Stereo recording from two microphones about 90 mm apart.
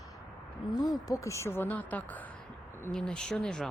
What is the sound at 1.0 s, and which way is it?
Speech, 35° left (ahead or behind).